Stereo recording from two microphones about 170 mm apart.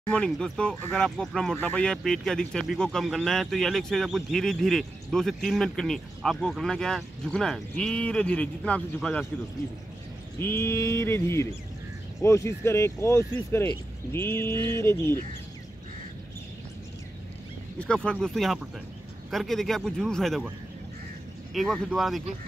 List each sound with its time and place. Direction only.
0.1 s speech: 5° left (ahead or behind)
10.4 s a sound: 15° left (ahead or behind)
17.7 s speech: 5° left (ahead or behind)
21.5 s speech: centre (ahead or behind)